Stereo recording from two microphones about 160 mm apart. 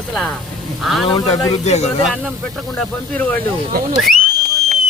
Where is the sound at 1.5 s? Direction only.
45° left (ahead or behind).